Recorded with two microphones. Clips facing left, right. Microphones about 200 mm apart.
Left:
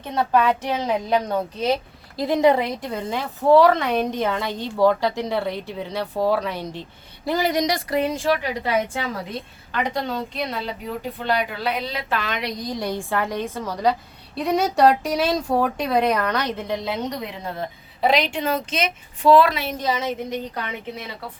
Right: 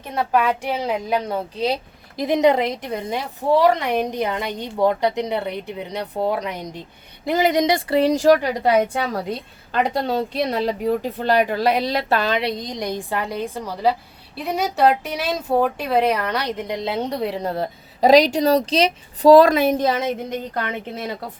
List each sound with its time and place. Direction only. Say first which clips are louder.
0.1 s a woman's voice: even; 10° right (ahead or behind); by 8.9 s 40° right (ahead or behind)
10.1 s a woman's voice: right 6 dB; 35° right (ahead or behind)